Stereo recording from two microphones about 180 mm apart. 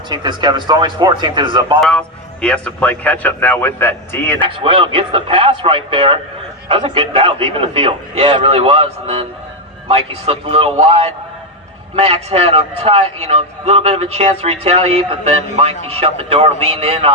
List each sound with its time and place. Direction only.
0.1 s speech: 25° right (ahead or behind)
1.8 s a man's voice: 5° left (ahead or behind)
4.4 s a man's voice: 30° right (ahead or behind)